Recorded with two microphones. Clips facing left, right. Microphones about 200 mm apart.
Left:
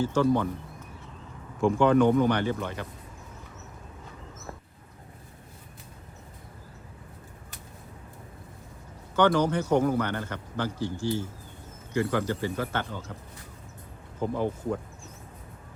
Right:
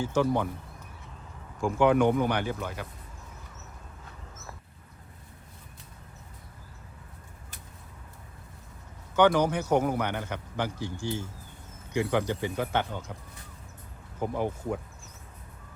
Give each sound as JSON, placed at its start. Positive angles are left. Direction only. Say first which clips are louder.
{"t": 0.0, "sound": "a man's voice", "louder": "left 2 dB", "side_deg": -15}
{"t": 1.6, "sound": "a man's voice", "louder": "left 2 dB", "side_deg": -10}
{"t": 9.1, "sound": "a man's voice", "louder": "even", "side_deg": -10}
{"t": 14.2, "sound": "a man's voice", "louder": "left 2 dB", "side_deg": -15}